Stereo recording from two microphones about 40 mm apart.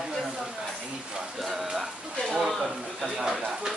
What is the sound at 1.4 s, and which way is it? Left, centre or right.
Music, centre.